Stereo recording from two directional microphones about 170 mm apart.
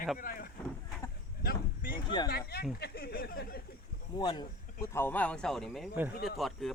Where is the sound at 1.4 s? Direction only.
60° left (ahead or behind).